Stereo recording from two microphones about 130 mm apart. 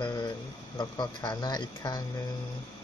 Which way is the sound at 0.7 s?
35° left (ahead or behind).